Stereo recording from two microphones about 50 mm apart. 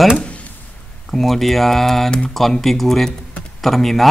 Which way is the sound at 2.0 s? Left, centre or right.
Centre.